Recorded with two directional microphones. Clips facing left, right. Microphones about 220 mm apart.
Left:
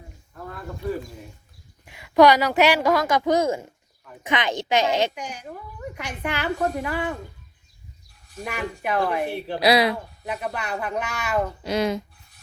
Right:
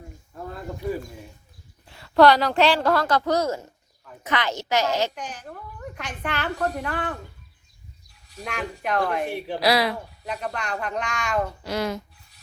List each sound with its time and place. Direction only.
1.8 s a woman's voice: 15° left (ahead or behind)
5.1 s a woman's voice: 10° left (ahead or behind)
8.4 s a woman's voice: 5° left (ahead or behind)
9.6 s a woman's voice: 20° left (ahead or behind)
10.2 s a woman's voice: 5° left (ahead or behind)
11.6 s a woman's voice: 20° left (ahead or behind)